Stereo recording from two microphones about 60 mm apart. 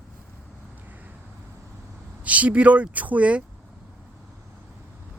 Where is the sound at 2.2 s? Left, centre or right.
Right.